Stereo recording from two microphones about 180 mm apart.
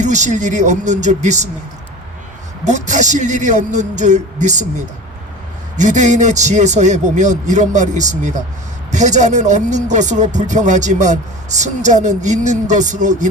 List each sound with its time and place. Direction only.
0.0 s speech: 40° right (ahead or behind)
2.6 s speech: 40° right (ahead or behind)
5.7 s speech: 40° right (ahead or behind)